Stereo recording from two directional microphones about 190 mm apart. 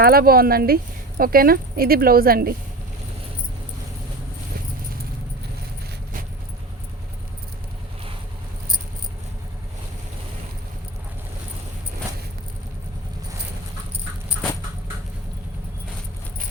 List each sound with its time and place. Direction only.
0.0 s speech: 50° right (ahead or behind)